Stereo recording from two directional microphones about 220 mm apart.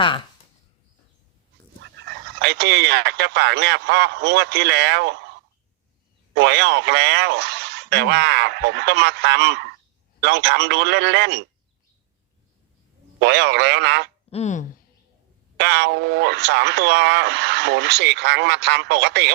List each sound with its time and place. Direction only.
1.8 s speech: 50° right (ahead or behind)
6.3 s speech: 50° right (ahead or behind)
13.1 s speech: 50° right (ahead or behind)
14.3 s speech: 30° left (ahead or behind)
15.5 s speech: 50° right (ahead or behind)